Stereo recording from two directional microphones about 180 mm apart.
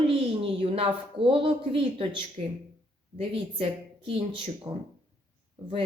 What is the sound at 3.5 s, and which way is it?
A woman's voice, 30° right (ahead or behind).